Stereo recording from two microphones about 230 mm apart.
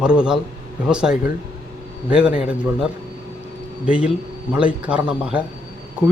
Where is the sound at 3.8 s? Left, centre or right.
Centre.